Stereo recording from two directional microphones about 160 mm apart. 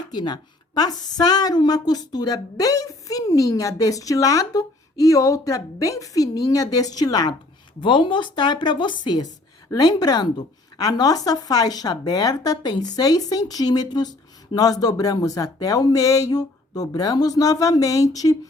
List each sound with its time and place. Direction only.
0.1 s a woman's voice: 25° left (ahead or behind)